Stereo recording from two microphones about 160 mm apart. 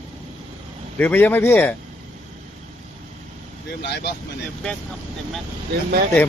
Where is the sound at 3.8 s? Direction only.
90° left.